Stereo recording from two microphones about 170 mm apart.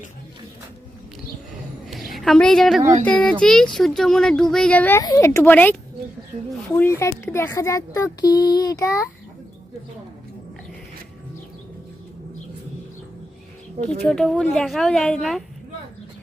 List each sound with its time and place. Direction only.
2.1 s speech: centre (ahead or behind)
6.7 s speech: 10° left (ahead or behind)
14.1 s speech: centre (ahead or behind)